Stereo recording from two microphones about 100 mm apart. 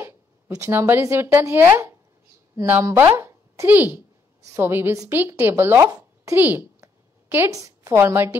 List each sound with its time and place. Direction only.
0.7 s a child's voice: 20° right (ahead or behind)
6.3 s a woman's voice: 20° right (ahead or behind)